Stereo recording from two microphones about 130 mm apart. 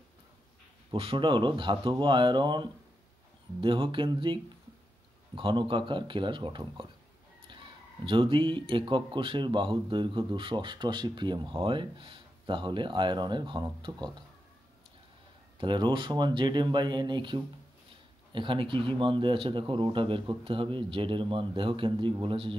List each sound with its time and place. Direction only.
0.9 s speech: 40° right (ahead or behind)
15.6 s speech: 35° right (ahead or behind)